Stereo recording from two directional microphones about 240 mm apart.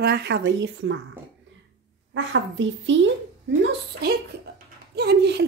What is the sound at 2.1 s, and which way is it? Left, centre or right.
Speech, right.